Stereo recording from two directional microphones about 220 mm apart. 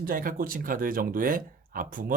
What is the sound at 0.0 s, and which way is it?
Speech, 40° right (ahead or behind).